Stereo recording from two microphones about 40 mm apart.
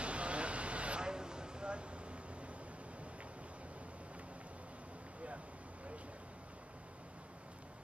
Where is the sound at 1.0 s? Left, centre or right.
Centre.